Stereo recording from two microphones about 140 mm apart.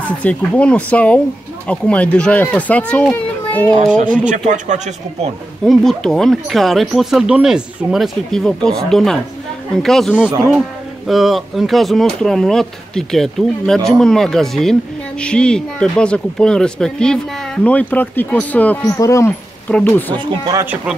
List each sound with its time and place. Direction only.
0.2 s speech: 10° left (ahead or behind)
3.8 s speech: 65° right (ahead or behind)
5.7 s speech: 5° left (ahead or behind)
18.9 s speech: 20° left (ahead or behind)
20.2 s speech: 25° right (ahead or behind)